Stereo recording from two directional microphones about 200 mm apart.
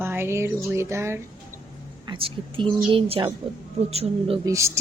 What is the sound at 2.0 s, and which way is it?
A woman's voice, 25° right (ahead or behind).